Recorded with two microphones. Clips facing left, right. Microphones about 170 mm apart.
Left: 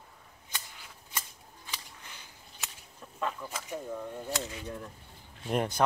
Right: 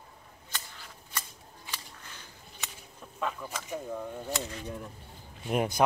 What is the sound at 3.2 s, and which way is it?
Speech, centre (ahead or behind).